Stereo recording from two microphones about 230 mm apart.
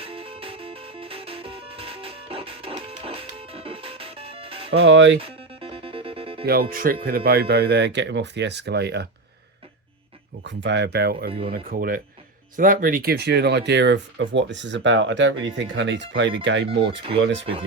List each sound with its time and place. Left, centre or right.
0.0 s music: right
4.8 s speech: right
5.2 s music: right
6.4 s speech: right
10.4 s speech: right
11.3 s speech: right
11.7 s speech: right